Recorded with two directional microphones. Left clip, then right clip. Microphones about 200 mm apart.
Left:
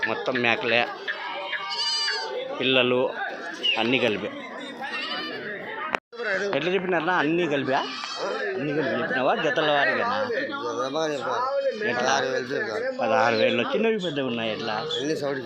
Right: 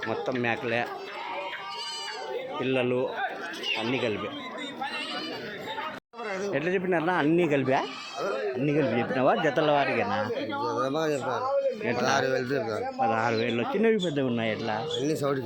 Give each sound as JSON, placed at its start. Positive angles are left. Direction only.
{"t": 0.1, "sound": "speech", "side_deg": -15}
{"t": 2.6, "sound": "speech", "side_deg": -5}
{"t": 6.2, "sound": "a sound", "side_deg": -75}
{"t": 6.5, "sound": "speech", "side_deg": -5}
{"t": 6.9, "sound": "speech", "side_deg": -25}
{"t": 9.1, "sound": "speech", "side_deg": -35}
{"t": 10.7, "sound": "a man's voice", "side_deg": -65}
{"t": 13.0, "sound": "speech", "side_deg": -15}
{"t": 13.8, "sound": "speech", "side_deg": -25}
{"t": 15.0, "sound": "a man's voice", "side_deg": -65}